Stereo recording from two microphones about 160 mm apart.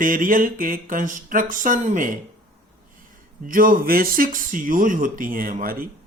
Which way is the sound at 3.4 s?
60° right (ahead or behind).